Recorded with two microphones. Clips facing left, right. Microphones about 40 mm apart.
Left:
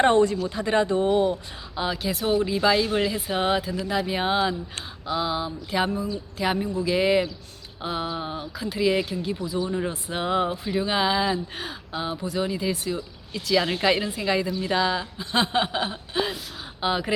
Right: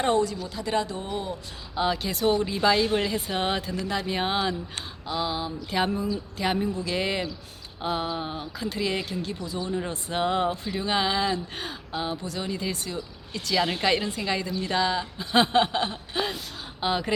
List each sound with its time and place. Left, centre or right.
0.0 s speech: left
1.7 s speech: centre